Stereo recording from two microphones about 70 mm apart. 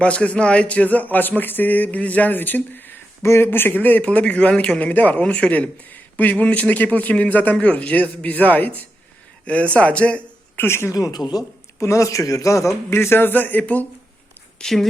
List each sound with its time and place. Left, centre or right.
0.0 s speech: centre
10.6 s speech: left
10.9 s speech: left
11.8 s a man's voice: left
14.6 s speech: centre